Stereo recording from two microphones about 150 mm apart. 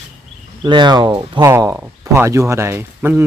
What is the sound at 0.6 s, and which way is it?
Speech, 30° right (ahead or behind).